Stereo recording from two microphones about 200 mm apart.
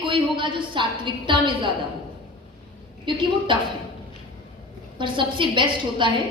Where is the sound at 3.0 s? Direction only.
25° right (ahead or behind).